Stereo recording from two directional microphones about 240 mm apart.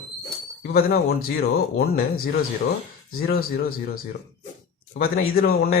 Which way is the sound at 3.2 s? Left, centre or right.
Left.